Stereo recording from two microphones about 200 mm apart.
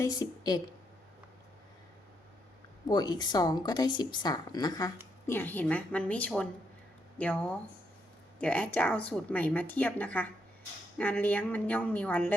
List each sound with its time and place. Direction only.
0.0 s speech: 20° left (ahead or behind)
2.9 s speech: 20° left (ahead or behind)